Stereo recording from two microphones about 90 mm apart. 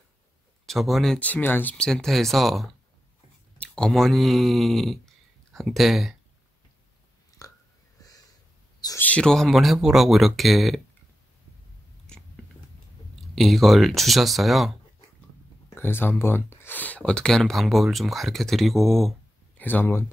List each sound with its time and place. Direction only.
0.7 s speech: centre (ahead or behind)
1.2 s speech: 20° left (ahead or behind)
1.9 s speech: 5° left (ahead or behind)
3.5 s speech: 10° left (ahead or behind)
7.3 s burping: 40° left (ahead or behind)
8.0 s a sound: 40° left (ahead or behind)
8.9 s speech: 15° left (ahead or behind); by 10.8 s centre (ahead or behind)
12.1 s biting: 10° left (ahead or behind)
13.2 s speech: centre (ahead or behind)
15.7 s speech: 25° left (ahead or behind); by 19.1 s centre (ahead or behind)
19.5 s speech: 20° left (ahead or behind)